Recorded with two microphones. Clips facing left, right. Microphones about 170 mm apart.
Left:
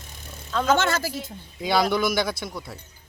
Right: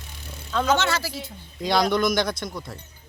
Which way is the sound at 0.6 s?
50° left (ahead or behind).